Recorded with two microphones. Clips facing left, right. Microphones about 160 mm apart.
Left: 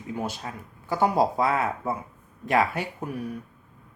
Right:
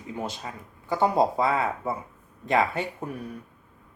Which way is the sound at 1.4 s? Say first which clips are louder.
Even; 20° right (ahead or behind).